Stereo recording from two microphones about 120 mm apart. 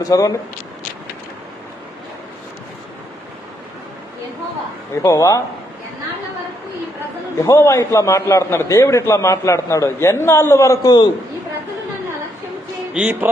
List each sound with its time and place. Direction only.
0.0 s speech: 30° left (ahead or behind)
5.0 s a man's voice: 25° left (ahead or behind)
7.4 s a man's voice: 25° left (ahead or behind)
12.9 s music: 10° right (ahead or behind)